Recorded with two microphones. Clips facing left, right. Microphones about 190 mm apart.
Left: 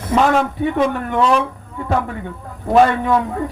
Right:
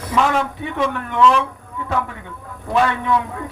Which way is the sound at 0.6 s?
40° left (ahead or behind).